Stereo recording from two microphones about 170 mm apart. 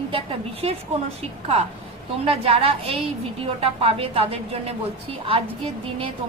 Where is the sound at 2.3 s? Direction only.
35° right (ahead or behind).